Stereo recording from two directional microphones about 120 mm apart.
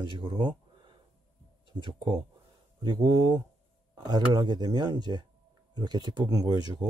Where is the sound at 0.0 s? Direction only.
40° right (ahead or behind).